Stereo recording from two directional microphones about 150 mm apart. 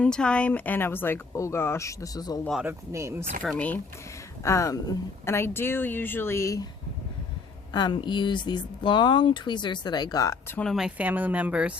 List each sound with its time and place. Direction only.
0.0 s speech: 5° left (ahead or behind); by 2.4 s 25° left (ahead or behind)
2.6 s speech: 20° right (ahead or behind)
3.4 s speech: 10° left (ahead or behind)
4.4 s speech: 20° left (ahead or behind)
7.7 s speech: 30° left (ahead or behind)
10.5 s speech: 5° left (ahead or behind)